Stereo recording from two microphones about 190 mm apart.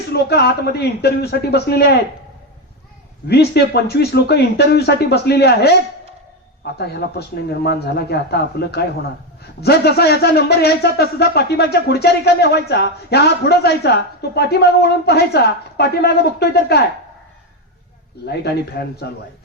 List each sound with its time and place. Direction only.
0.1 s a man's voice: 60° left (ahead or behind)
3.2 s a man's voice: 60° left (ahead or behind)
6.7 s a man's voice: 60° left (ahead or behind)
18.3 s a man's voice: 55° left (ahead or behind)